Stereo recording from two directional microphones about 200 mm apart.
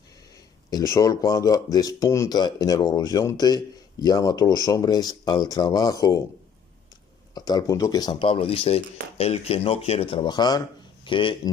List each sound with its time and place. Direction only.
0.7 s speech: 15° left (ahead or behind)
7.3 s speech: 20° left (ahead or behind)